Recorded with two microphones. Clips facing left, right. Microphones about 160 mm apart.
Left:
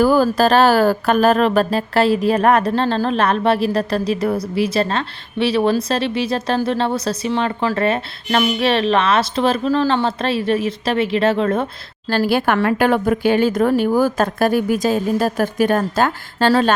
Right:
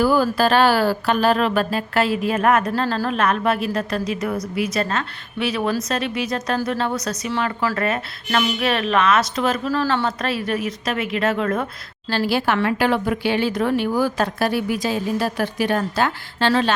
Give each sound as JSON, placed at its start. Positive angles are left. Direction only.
{"t": 0.0, "sound": "speech", "side_deg": 45}
{"t": 12.0, "sound": "speech", "side_deg": 50}